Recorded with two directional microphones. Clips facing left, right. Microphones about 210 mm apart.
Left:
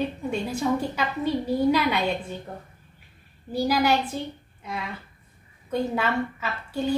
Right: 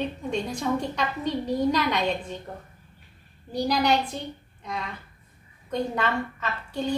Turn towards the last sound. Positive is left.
turn(degrees=5)  # may be behind; listen again after turning